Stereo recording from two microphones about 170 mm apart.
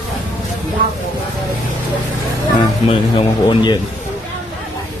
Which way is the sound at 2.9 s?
30° left (ahead or behind).